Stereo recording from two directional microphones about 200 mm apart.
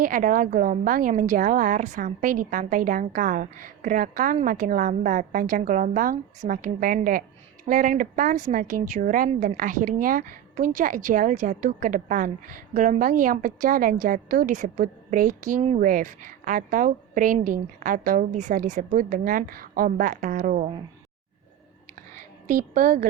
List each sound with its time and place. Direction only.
0.0 s a woman's voice: 45° right (ahead or behind)
22.4 s speech: 40° right (ahead or behind)